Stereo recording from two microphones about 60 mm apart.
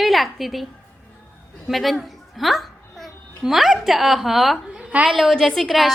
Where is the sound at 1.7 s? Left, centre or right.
Centre.